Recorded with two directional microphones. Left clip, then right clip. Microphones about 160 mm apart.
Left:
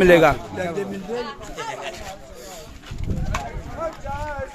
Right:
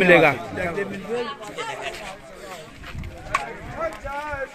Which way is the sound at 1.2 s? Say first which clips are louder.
Right 1 dB; 80° left.